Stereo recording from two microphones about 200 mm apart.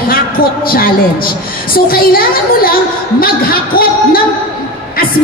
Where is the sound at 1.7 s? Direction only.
45° left (ahead or behind).